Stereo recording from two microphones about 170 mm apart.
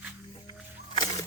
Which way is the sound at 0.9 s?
25° left (ahead or behind).